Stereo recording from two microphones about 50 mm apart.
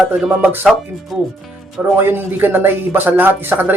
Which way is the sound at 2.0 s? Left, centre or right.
Right.